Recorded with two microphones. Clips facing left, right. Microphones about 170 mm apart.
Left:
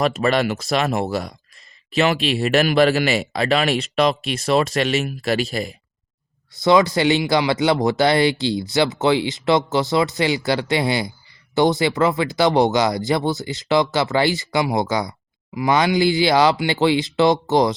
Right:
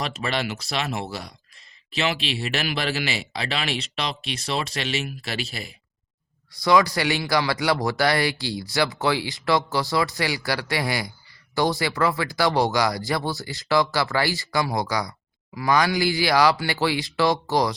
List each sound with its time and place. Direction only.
0.0 s speech: 50° left (ahead or behind)
6.5 s speech: 25° left (ahead or behind)